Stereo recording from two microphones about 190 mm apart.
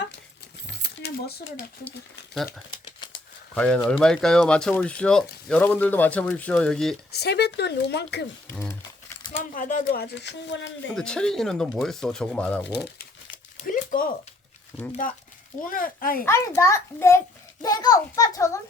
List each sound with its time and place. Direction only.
0.7 s a sound: 60° left (ahead or behind)
3.5 s speech: 5° left (ahead or behind)
7.1 s speech: 60° left (ahead or behind)
9.4 s speech: 45° left (ahead or behind); by 10.7 s 70° left (ahead or behind)
10.9 s speech: 5° left (ahead or behind)
13.3 s a sound: 45° left (ahead or behind)
15.0 s speech: 45° left (ahead or behind)
16.6 s a child's voice: 15° left (ahead or behind)